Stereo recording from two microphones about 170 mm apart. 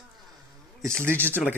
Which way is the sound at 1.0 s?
15° right (ahead or behind).